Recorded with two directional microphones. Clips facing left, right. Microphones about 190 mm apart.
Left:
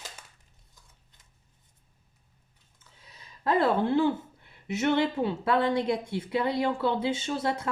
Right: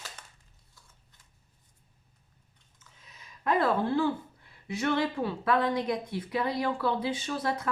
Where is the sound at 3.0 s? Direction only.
30° left (ahead or behind).